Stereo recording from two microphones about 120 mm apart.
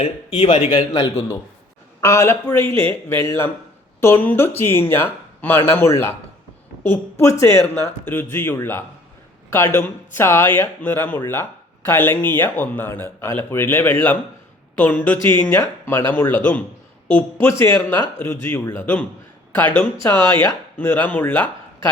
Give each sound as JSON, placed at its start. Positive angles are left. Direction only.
{"t": 0.0, "sound": "a man's voice", "side_deg": 45}
{"t": 0.9, "sound": "speech", "side_deg": 25}